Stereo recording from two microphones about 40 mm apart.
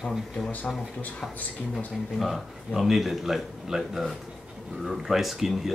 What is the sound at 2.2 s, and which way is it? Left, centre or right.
Speech, centre.